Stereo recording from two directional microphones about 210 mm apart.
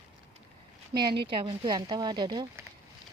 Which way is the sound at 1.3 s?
20° right (ahead or behind).